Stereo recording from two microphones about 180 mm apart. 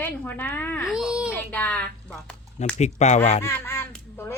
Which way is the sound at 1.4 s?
10° left (ahead or behind).